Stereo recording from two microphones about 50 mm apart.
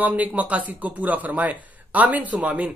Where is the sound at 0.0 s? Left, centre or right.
Right.